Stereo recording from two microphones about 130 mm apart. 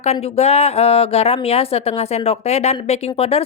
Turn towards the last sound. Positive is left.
turn(degrees=50)  # may be behind; listen again after turning